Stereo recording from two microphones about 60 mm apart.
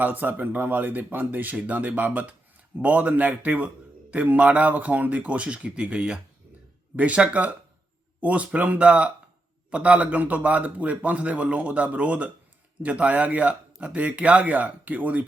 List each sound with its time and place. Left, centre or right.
0.0 s a man's voice: right